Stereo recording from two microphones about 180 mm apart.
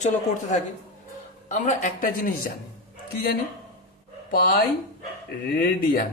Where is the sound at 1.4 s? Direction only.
45° left (ahead or behind).